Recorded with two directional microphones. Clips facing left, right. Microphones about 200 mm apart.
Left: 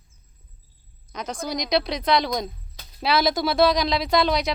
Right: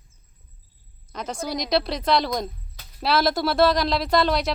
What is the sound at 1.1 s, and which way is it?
Speech, 5° right (ahead or behind).